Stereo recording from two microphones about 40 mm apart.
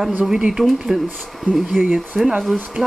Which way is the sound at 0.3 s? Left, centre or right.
Centre.